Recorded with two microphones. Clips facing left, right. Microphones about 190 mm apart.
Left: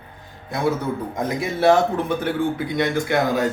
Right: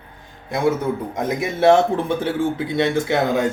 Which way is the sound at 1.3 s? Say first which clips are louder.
Right 2 dB; 25° right (ahead or behind).